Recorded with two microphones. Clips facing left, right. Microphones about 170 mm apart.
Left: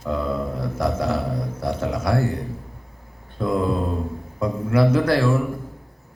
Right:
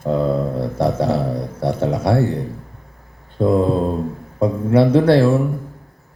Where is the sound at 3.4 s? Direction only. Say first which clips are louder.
Right 6 dB; 35° right (ahead or behind).